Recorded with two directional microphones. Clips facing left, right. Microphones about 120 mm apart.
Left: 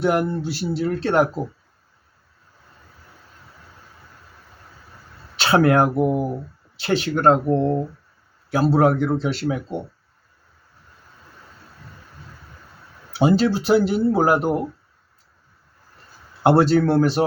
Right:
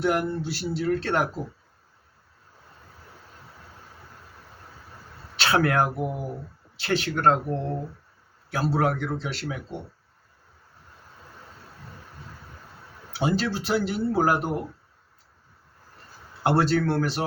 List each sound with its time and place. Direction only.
0.0 s speech: 25° left (ahead or behind)
5.4 s speech: 25° left (ahead or behind)
13.1 s speech: 25° left (ahead or behind)
16.4 s speech: 20° left (ahead or behind)